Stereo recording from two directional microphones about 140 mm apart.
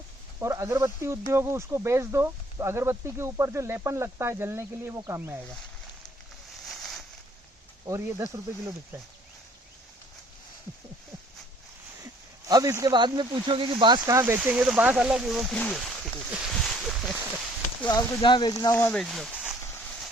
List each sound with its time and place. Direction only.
0.3 s speech: 20° right (ahead or behind)
6.7 s a sound: centre (ahead or behind)
7.9 s speech: 25° right (ahead or behind)
12.5 s speech: 25° right (ahead or behind)
14.1 s speech: 20° right (ahead or behind)
14.3 s speech: 10° right (ahead or behind)
16.3 s a sound: centre (ahead or behind)
17.8 s speech: 30° left (ahead or behind)
18.9 s speech: centre (ahead or behind)